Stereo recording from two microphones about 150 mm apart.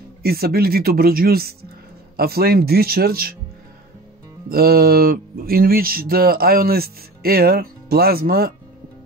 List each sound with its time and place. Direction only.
0.2 s speech: 90° right
4.5 s speech: 90° right